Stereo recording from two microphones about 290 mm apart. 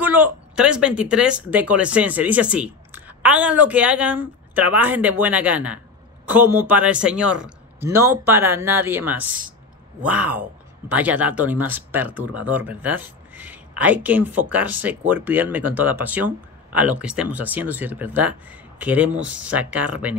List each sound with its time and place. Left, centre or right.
0.0 s speech: centre